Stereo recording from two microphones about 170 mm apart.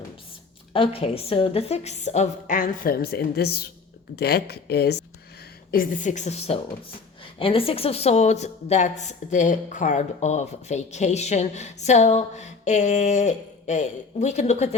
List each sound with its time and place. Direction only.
0.7 s a woman's voice: 35° left (ahead or behind); by 5.0 s 70° left (ahead or behind)
5.7 s a woman's voice: 50° left (ahead or behind)